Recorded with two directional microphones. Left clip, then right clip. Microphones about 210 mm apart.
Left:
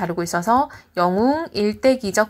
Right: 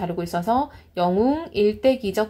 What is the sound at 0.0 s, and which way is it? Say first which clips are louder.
A woman's voice: left 3 dB; 35° left (ahead or behind).